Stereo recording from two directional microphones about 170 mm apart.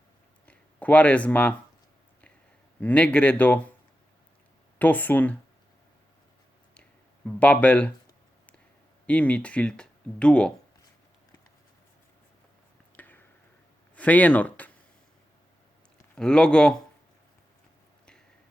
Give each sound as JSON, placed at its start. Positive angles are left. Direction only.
{"t": 0.4, "sound": "speech", "side_deg": 10}
{"t": 2.8, "sound": "speech", "side_deg": 5}
{"t": 4.8, "sound": "speech", "side_deg": 10}
{"t": 7.3, "sound": "speech", "side_deg": 5}
{"t": 9.0, "sound": "speech", "side_deg": 5}
{"t": 13.0, "sound": "a sound", "side_deg": 10}
{"t": 13.9, "sound": "speech", "side_deg": 10}
{"t": 16.0, "sound": "speech", "side_deg": 5}